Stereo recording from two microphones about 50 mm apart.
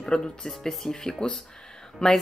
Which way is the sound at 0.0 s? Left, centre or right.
Centre.